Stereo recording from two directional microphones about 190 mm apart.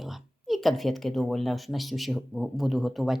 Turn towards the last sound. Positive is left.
turn(degrees=0)  # may be behind; listen again after turning